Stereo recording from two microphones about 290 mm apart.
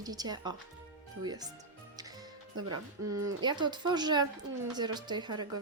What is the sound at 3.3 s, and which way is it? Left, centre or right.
Speech, centre.